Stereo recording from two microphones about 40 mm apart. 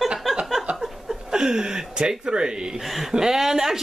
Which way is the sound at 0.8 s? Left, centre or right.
Centre.